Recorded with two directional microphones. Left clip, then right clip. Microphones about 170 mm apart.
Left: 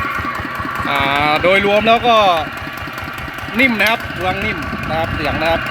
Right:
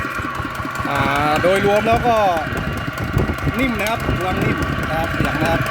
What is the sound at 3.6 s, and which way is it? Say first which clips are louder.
Speech: left 8 dB; 10° right (ahead or behind).